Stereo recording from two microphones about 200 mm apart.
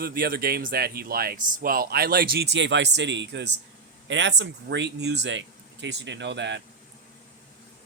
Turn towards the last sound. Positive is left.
turn(degrees=-60)  # may be behind; listen again after turning